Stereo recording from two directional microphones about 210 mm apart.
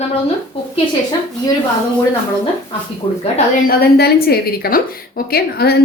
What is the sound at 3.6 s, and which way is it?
Speech, 50° left (ahead or behind).